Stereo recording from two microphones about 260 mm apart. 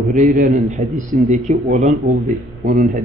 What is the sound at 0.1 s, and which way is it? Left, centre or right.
A man's voice, right.